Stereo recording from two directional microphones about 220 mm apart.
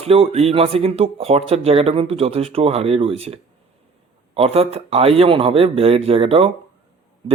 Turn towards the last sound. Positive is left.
turn(degrees=-25)  # may be behind; listen again after turning